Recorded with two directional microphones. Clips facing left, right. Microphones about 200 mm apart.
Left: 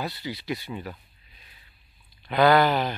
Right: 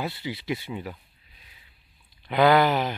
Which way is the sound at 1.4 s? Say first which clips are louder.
Even; 10° right (ahead or behind).